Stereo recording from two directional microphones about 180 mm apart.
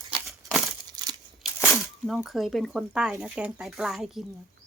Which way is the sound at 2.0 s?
Centre (ahead or behind).